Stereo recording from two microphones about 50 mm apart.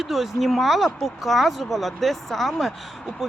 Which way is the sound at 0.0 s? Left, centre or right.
Centre.